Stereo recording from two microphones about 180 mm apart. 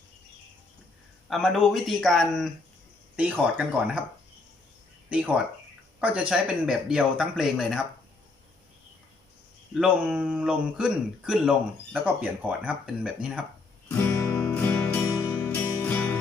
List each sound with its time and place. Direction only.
1.3 s speech: centre (ahead or behind)
5.0 s speech: 5° right (ahead or behind)
9.7 s speech: 5° right (ahead or behind)
13.8 s music: 15° left (ahead or behind)